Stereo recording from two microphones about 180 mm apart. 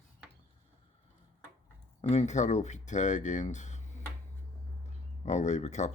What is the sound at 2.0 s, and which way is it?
Speech, 40° left (ahead or behind).